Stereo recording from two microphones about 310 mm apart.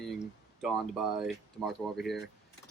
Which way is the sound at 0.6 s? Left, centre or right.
Centre.